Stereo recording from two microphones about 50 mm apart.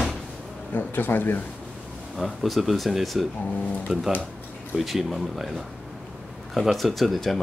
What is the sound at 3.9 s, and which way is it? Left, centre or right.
Speech, centre.